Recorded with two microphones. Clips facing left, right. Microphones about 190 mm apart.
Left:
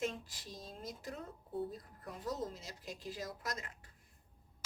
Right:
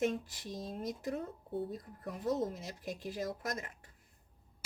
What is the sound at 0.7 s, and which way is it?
Speech, 55° right (ahead or behind).